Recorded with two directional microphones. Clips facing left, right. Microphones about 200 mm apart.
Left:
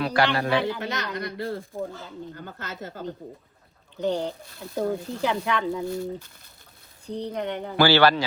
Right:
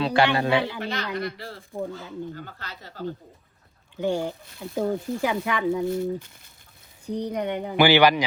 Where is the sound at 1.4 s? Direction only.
55° left (ahead or behind).